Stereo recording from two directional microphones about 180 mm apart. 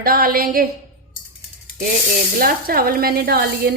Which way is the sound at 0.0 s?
55° right (ahead or behind).